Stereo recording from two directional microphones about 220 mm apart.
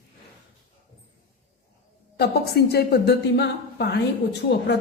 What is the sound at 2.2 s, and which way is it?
A woman's voice, 45° left (ahead or behind).